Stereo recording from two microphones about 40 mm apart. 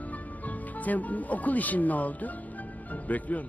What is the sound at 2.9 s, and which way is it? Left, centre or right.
Speech, left.